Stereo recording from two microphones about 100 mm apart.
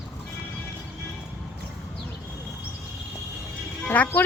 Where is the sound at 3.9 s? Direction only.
15° left (ahead or behind).